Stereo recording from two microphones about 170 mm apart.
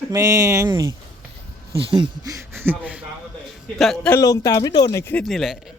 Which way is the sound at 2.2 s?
15° right (ahead or behind).